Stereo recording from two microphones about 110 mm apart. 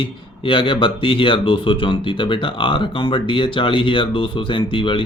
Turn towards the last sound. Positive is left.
turn(degrees=50)  # may be behind; listen again after turning